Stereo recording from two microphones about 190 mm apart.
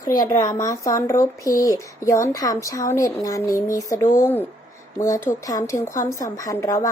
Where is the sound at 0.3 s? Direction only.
15° left (ahead or behind).